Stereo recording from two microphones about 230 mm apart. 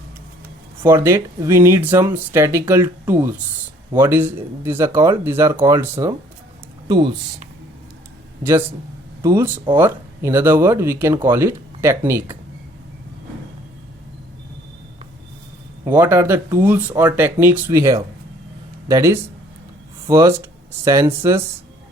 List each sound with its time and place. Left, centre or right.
0.8 s speech: centre
9.2 s speech: centre
15.9 s speech: centre